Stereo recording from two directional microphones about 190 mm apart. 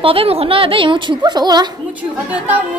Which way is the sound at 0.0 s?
30° right (ahead or behind).